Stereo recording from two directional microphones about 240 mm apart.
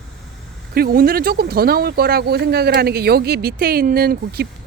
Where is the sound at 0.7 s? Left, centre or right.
Right.